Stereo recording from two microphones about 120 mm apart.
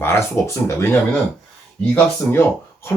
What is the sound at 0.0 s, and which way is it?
Speech, 20° left (ahead or behind).